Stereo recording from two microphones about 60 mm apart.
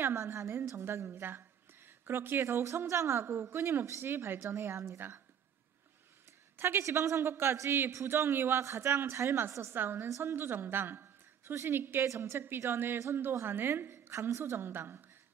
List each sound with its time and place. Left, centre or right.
0.0 s a woman's voice: right
6.5 s a woman's voice: right
6.8 s a woman's voice: right
9.8 s a woman's voice: right
10.0 s a woman's voice: right
10.3 s a woman's voice: right